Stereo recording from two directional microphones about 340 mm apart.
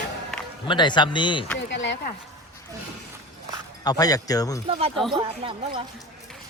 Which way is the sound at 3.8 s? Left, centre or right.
Centre.